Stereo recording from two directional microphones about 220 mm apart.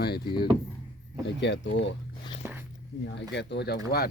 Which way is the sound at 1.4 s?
55° left (ahead or behind).